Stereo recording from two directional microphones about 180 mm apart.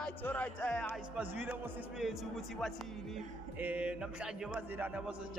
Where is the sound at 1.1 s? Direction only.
10° right (ahead or behind).